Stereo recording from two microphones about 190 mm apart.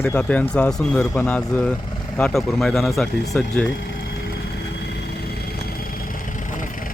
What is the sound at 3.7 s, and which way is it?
Vehicle, 65° left (ahead or behind).